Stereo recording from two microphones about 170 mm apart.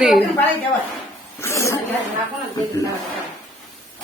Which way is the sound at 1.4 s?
15° left (ahead or behind).